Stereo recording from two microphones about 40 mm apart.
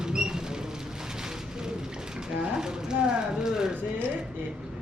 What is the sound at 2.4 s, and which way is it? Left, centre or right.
Speech, centre.